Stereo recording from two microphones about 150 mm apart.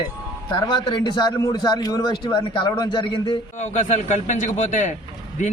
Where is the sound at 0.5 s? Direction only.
30° left (ahead or behind).